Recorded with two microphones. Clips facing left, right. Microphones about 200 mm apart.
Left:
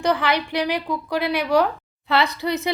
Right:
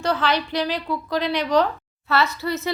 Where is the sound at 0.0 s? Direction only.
15° left (ahead or behind).